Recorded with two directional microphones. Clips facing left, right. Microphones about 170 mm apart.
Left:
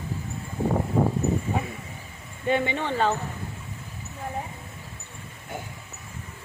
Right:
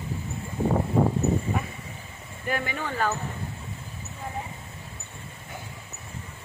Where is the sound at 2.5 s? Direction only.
25° left (ahead or behind).